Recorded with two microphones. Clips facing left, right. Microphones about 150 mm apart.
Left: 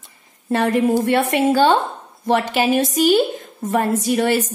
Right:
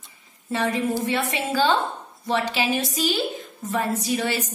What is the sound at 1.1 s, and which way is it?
A woman's voice, 55° left (ahead or behind).